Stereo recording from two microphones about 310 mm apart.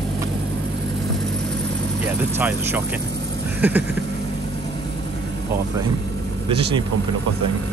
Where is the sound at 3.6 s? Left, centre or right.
Centre.